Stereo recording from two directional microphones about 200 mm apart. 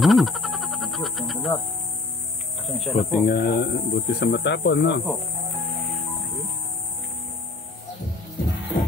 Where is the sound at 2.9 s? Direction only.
Centre (ahead or behind).